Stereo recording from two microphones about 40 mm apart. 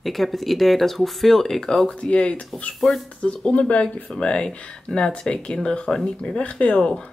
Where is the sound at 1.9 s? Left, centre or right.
Left.